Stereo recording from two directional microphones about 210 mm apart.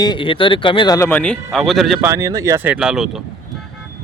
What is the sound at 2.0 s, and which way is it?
Speech, 15° right (ahead or behind).